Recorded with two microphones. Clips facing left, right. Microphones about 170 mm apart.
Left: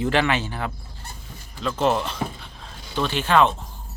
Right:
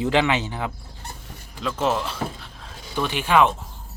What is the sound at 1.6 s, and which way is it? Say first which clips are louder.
Speech: left 2 dB; 5° right (ahead or behind).